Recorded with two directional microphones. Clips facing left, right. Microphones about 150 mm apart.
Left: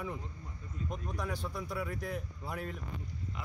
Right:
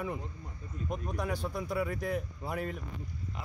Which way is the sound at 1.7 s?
80° right.